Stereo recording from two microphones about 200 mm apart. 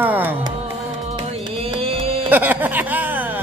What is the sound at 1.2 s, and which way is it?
Music, 25° right (ahead or behind).